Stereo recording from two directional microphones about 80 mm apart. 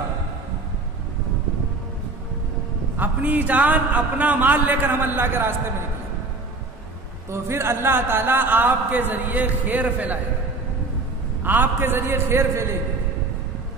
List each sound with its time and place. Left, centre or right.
3.0 s speech: right
7.2 s speech: right
11.4 s speech: right